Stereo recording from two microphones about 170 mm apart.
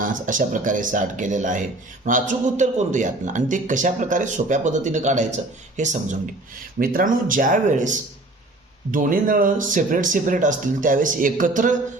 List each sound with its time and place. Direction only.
0.0 s a man's voice: 50° right (ahead or behind)
6.7 s a man's voice: 55° right (ahead or behind)